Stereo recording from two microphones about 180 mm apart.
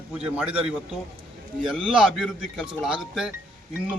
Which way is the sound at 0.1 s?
5° right (ahead or behind).